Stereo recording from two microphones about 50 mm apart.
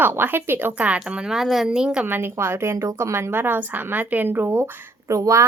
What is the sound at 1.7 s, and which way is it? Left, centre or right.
Speech, centre.